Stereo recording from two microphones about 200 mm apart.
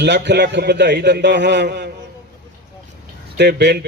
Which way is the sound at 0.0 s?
60° right (ahead or behind).